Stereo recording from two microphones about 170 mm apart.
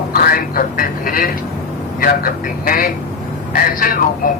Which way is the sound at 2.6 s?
55° left (ahead or behind).